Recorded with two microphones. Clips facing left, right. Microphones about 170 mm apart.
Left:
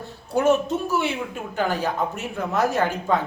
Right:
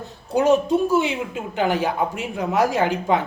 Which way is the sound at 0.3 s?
15° right (ahead or behind).